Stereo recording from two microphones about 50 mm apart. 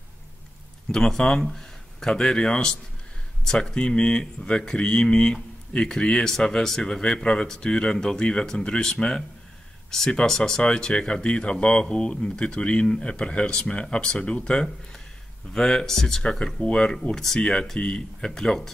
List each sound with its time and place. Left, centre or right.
0.9 s speech: centre